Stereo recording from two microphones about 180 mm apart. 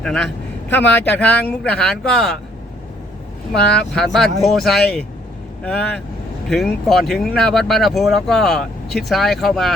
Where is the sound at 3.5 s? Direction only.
5° left (ahead or behind).